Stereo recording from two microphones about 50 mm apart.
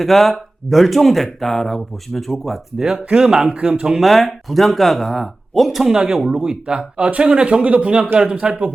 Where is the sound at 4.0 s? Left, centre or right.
Centre.